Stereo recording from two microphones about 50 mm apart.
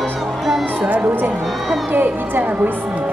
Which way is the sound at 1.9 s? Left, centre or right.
Right.